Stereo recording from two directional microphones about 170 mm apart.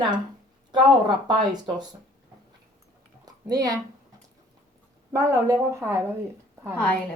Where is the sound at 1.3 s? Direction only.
25° right (ahead or behind).